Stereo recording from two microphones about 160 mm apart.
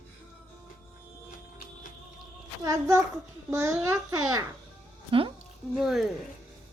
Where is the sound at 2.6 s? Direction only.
20° right (ahead or behind).